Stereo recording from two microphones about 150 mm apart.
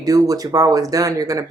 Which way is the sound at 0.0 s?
25° right (ahead or behind).